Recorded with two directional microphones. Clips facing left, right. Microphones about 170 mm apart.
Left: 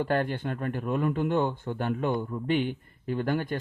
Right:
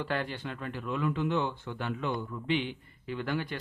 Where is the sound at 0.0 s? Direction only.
50° left (ahead or behind).